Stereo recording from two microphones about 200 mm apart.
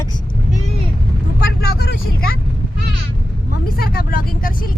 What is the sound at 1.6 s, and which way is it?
Speech, 50° left (ahead or behind).